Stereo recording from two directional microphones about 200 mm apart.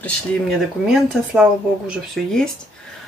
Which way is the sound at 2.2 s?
Centre (ahead or behind).